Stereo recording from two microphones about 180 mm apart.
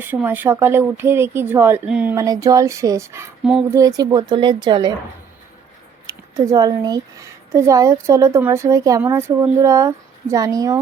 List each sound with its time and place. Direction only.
0.0 s speech: 10° right (ahead or behind)
2.1 s speech: 20° right (ahead or behind)
6.1 s speech: 15° right (ahead or behind)